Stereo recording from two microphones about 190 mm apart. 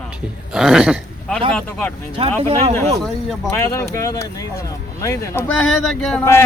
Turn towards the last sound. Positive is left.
turn(degrees=0)  # may be behind; listen again after turning